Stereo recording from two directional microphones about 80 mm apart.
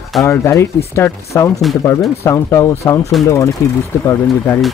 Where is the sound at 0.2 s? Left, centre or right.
Left.